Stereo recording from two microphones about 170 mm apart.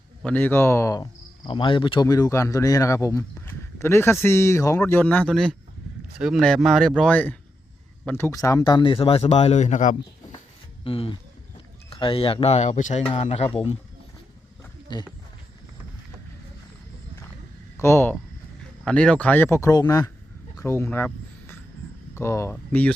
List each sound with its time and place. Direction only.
0.2 s speech: 10° left (ahead or behind)
1.5 s speech: 30° left (ahead or behind); by 10.0 s 45° left (ahead or behind)
10.8 s speech: 35° left (ahead or behind)
14.6 s wild animals: 25° left (ahead or behind)
17.7 s speech: 15° left (ahead or behind)
20.6 s a sound: 15° left (ahead or behind)
22.1 s speech: 15° left (ahead or behind)